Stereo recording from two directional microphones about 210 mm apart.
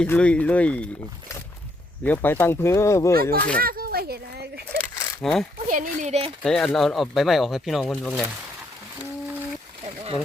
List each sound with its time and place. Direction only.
0.0 s speech: 5° left (ahead or behind)
2.0 s speech: 10° left (ahead or behind)
3.6 s speech: 45° right (ahead or behind)
4.8 s a sound: 5° left (ahead or behind)
5.6 s speech: 40° right (ahead or behind)
6.4 s speech: centre (ahead or behind)
9.8 s a sound: 30° right (ahead or behind)